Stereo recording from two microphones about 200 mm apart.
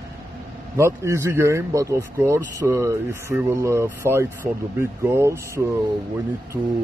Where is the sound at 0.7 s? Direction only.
15° right (ahead or behind).